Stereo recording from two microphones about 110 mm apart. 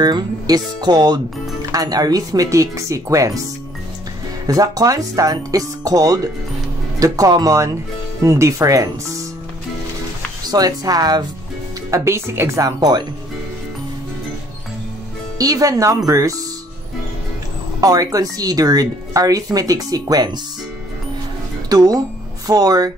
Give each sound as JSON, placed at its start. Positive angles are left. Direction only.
{"t": 0.0, "sound": "speech", "side_deg": -40}
{"t": 4.5, "sound": "speech", "side_deg": -35}
{"t": 10.4, "sound": "speech", "side_deg": -35}
{"t": 11.9, "sound": "speech", "side_deg": -25}
{"t": 15.3, "sound": "speech", "side_deg": -35}
{"t": 17.7, "sound": "speech", "side_deg": -35}
{"t": 21.6, "sound": "speech", "side_deg": -35}